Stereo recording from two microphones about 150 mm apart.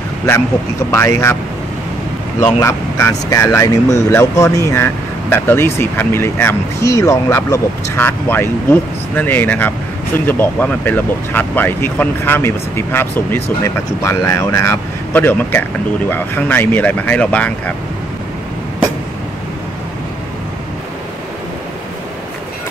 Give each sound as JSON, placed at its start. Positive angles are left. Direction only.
{"t": 0.9, "sound": "speech", "side_deg": 20}
{"t": 2.6, "sound": "speech", "side_deg": 20}